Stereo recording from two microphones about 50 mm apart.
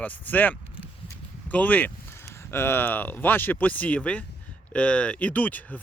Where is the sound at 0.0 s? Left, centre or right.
Left.